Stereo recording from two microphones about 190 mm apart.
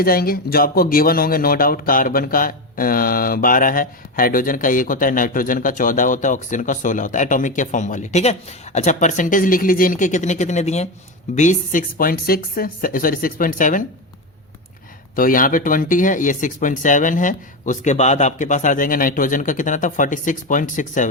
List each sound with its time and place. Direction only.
0.0 s speech: 50° left (ahead or behind)
15.1 s speech: 45° left (ahead or behind)